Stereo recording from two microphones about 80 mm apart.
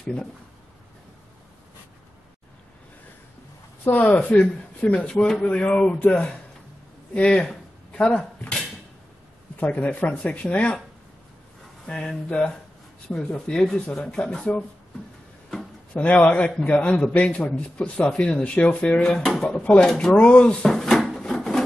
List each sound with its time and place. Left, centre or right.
0.0 s speech: centre
3.8 s speech: centre
9.6 s speech: centre
11.8 s speech: centre
15.9 s speech: centre
19.2 s speech: centre
19.6 s speech: centre
20.7 s wood: centre